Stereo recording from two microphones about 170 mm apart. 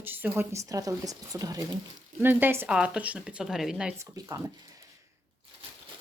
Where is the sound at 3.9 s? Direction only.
15° right (ahead or behind).